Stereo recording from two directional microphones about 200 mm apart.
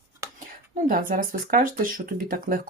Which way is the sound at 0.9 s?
45° right (ahead or behind).